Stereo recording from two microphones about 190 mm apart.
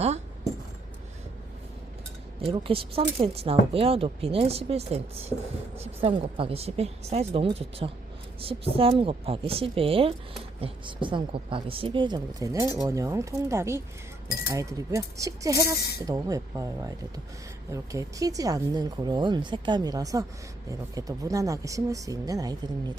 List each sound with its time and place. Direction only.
2.4 s a woman's voice: 30° right (ahead or behind)